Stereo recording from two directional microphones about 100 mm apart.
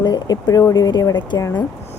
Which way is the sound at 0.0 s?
40° left (ahead or behind).